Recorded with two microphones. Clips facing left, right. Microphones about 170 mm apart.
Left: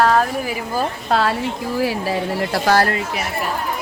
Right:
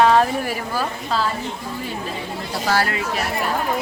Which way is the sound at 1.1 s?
70° left (ahead or behind).